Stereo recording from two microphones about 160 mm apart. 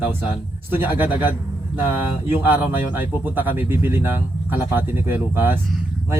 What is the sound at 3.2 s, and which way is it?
Speech, 10° right (ahead or behind).